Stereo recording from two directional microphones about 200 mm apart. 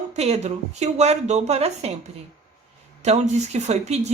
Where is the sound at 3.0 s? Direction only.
35° right (ahead or behind).